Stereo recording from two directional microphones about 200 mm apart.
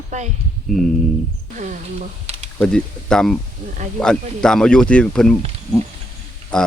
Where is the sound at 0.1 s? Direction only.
35° right (ahead or behind).